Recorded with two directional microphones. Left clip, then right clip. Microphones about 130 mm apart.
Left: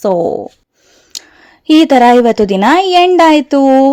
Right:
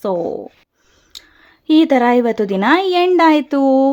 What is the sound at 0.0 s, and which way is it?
Speech, 40° left (ahead or behind).